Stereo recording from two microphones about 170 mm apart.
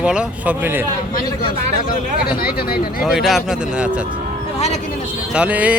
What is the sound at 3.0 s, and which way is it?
Speech, centre (ahead or behind).